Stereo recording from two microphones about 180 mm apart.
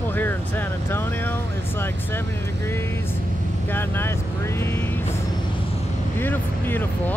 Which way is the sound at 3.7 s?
10° left (ahead or behind).